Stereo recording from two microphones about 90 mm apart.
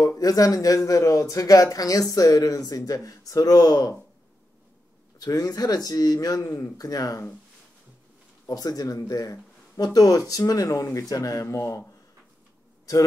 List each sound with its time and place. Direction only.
0.0 s speech: 40° left (ahead or behind)
5.2 s speech: 45° left (ahead or behind)
8.5 s speech: 45° left (ahead or behind)